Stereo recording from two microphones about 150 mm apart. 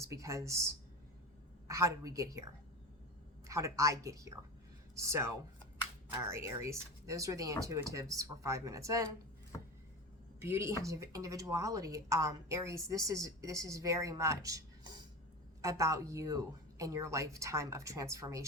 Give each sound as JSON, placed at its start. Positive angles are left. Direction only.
{"t": 0.0, "sound": "speech", "side_deg": -20}
{"t": 10.4, "sound": "speech", "side_deg": -15}